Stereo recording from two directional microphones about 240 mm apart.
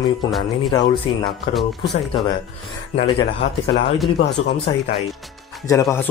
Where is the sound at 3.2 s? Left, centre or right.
Left.